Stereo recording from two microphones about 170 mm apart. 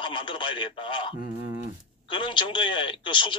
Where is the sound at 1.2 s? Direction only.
25° right (ahead or behind).